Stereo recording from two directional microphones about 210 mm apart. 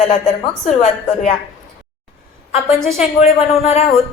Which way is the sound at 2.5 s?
30° left (ahead or behind).